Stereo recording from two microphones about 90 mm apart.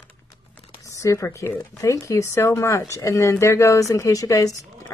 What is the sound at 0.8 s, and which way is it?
Speech, 35° left (ahead or behind).